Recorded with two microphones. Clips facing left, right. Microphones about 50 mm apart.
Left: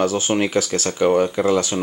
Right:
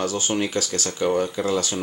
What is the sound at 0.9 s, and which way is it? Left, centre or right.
Speech, left.